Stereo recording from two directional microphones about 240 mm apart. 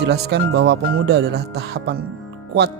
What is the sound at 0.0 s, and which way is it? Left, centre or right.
Speech, right.